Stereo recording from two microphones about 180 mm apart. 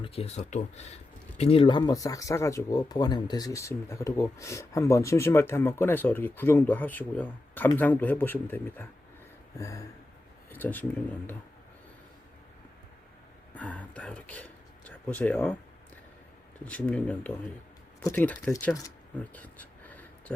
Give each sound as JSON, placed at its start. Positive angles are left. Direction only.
{"t": 0.0, "sound": "speech", "side_deg": 35}
{"t": 13.6, "sound": "speech", "side_deg": 10}
{"t": 16.6, "sound": "speech", "side_deg": 5}
{"t": 19.3, "sound": "a sound", "side_deg": 10}